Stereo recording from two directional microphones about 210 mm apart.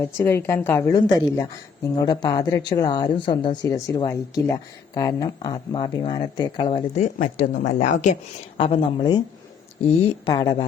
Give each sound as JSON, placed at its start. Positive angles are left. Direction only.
{"t": 0.0, "sound": "a woman's voice", "side_deg": 10}
{"t": 8.5, "sound": "a woman's voice", "side_deg": 25}